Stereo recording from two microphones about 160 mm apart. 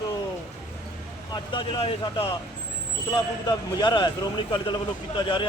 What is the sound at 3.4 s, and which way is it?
Speech, 25° left (ahead or behind).